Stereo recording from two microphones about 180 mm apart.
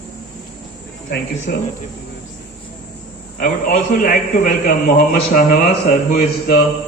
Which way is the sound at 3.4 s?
50° left (ahead or behind).